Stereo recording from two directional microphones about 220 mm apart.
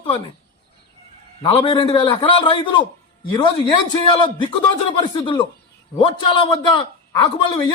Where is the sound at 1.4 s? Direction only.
25° left (ahead or behind).